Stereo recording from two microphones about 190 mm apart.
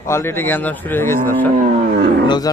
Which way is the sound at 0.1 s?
15° left (ahead or behind).